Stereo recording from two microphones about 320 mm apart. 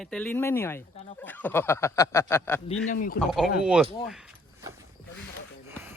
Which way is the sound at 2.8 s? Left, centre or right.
Left.